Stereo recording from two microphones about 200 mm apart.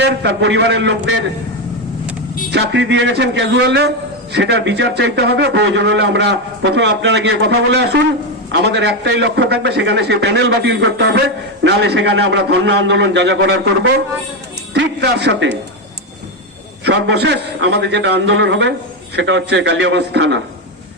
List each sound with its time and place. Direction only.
0.0 s a man's voice: 60° right (ahead or behind)
2.5 s a man's voice: 65° right (ahead or behind)
14.7 s a man's voice: 60° right (ahead or behind)
16.8 s a man's voice: 60° right (ahead or behind)